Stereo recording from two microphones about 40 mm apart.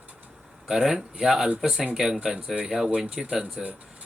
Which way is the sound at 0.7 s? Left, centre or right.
Centre.